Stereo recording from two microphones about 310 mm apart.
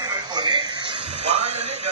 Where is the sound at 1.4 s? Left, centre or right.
Right.